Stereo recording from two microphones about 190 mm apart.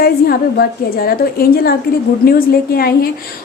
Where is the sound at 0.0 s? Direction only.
55° left (ahead or behind).